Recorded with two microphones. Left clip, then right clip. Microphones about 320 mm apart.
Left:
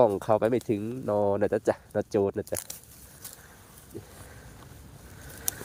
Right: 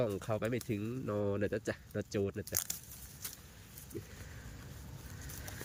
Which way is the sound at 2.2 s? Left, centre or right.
Left.